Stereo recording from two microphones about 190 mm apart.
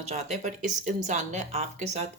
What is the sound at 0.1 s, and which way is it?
Speech, 40° right (ahead or behind).